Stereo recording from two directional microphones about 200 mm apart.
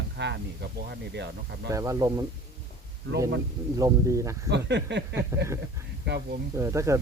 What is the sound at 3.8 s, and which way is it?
Speech, 15° right (ahead or behind).